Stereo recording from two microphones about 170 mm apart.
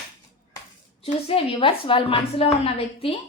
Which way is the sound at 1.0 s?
30° left (ahead or behind).